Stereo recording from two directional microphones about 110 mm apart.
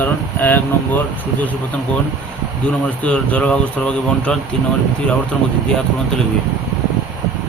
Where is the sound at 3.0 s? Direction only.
10° left (ahead or behind).